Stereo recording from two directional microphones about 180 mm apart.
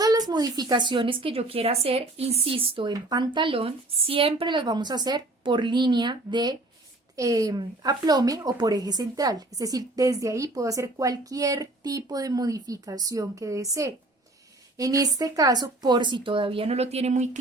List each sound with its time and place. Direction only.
0.0 s speech: 20° right (ahead or behind); by 17.2 s 40° right (ahead or behind)